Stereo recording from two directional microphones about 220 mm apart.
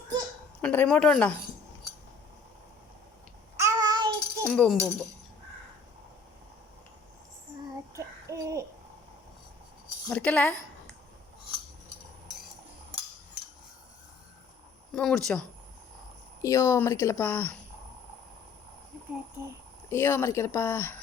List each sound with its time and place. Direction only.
0.6 s a woman's voice: 5° left (ahead or behind)
3.6 s child singing: 15° right (ahead or behind)
4.4 s speech: 5° left (ahead or behind)
7.9 s child singing: 15° right (ahead or behind)
10.1 s a woman's voice: 5° left (ahead or behind)
14.9 s a woman's voice: centre (ahead or behind)
16.4 s a woman's voice: 15° left (ahead or behind)
19.9 s a woman's voice: 10° left (ahead or behind)